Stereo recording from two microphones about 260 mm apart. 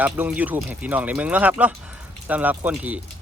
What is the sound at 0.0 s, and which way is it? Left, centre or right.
Speech, centre.